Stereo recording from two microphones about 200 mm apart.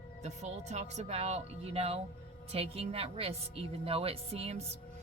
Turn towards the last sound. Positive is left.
turn(degrees=-30)  # may be behind; listen again after turning